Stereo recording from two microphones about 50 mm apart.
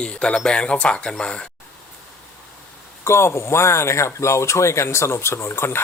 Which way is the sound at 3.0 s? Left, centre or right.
Left.